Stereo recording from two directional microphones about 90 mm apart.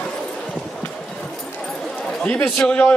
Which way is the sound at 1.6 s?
5° left (ahead or behind).